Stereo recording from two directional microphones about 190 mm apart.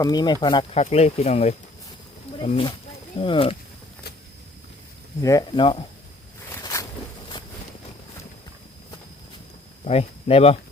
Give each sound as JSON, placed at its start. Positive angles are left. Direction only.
{"t": 0.0, "sound": "speech", "side_deg": 20}
{"t": 0.8, "sound": "speech", "side_deg": 35}
{"t": 5.2, "sound": "speech", "side_deg": 20}
{"t": 6.6, "sound": "a sound", "side_deg": 20}
{"t": 9.8, "sound": "speech", "side_deg": 30}